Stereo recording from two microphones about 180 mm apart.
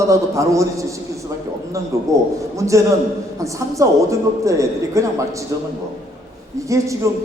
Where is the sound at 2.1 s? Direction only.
15° right (ahead or behind).